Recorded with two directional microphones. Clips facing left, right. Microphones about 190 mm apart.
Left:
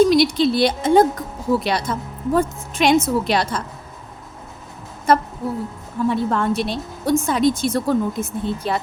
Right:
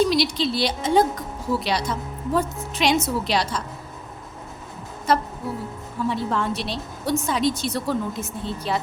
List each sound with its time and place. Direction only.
0.0 s a woman's voice: 50° left (ahead or behind)
5.1 s a woman's voice: 50° left (ahead or behind)